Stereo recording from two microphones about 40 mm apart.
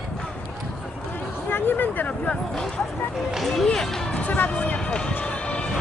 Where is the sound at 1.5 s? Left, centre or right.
Left.